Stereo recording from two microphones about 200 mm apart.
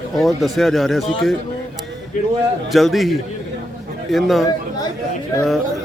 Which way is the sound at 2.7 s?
Centre (ahead or behind).